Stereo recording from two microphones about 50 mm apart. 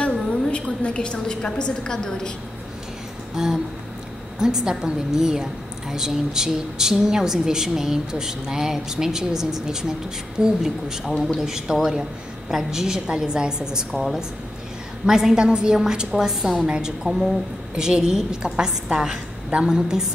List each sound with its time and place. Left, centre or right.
0.0 s a woman's voice: left
3.4 s a woman's voice: centre
15.0 s a woman's voice: centre